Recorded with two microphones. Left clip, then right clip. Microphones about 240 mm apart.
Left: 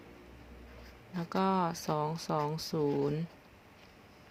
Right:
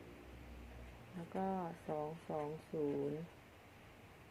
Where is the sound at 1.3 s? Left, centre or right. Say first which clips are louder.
Left 11 dB; left.